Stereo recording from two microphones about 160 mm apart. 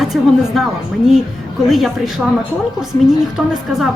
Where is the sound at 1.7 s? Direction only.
Centre (ahead or behind).